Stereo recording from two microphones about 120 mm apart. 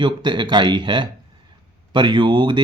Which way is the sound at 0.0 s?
40° right (ahead or behind).